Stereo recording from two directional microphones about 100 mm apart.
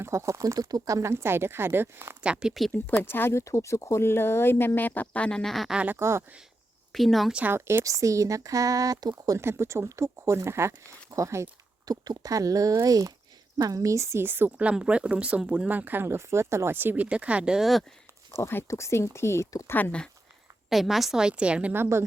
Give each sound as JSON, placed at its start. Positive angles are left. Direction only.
{"t": 0.0, "sound": "speech", "side_deg": -30}
{"t": 2.2, "sound": "a woman's voice", "side_deg": -10}
{"t": 2.5, "sound": "speech", "side_deg": 0}
{"t": 3.0, "sound": "speech", "side_deg": 20}
{"t": 5.7, "sound": "a woman's voice", "side_deg": -15}
{"t": 6.0, "sound": "speech", "side_deg": -25}
{"t": 6.9, "sound": "speech", "side_deg": 0}
{"t": 7.3, "sound": "speech", "side_deg": -20}
{"t": 9.4, "sound": "a woman's voice", "side_deg": -25}
{"t": 18.3, "sound": "speech", "side_deg": 25}
{"t": 20.7, "sound": "a woman's voice", "side_deg": 0}